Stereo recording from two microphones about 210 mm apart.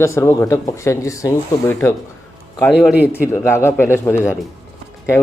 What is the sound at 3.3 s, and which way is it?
Speech, 10° left (ahead or behind).